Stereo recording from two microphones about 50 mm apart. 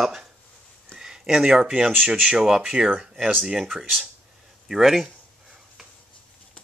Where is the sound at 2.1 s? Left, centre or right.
Centre.